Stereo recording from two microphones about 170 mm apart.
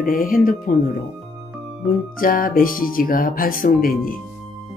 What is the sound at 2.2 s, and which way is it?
Speech, 55° left (ahead or behind).